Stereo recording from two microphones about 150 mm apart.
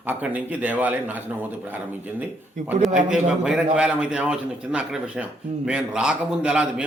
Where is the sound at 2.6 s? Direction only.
55° right (ahead or behind).